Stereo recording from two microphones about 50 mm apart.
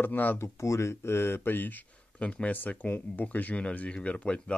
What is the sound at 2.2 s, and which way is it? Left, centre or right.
Speech, left.